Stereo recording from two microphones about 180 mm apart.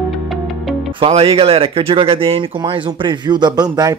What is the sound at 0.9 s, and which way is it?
Speech, 30° right (ahead or behind).